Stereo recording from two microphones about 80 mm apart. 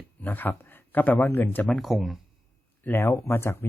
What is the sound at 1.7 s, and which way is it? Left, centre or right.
Speech, centre.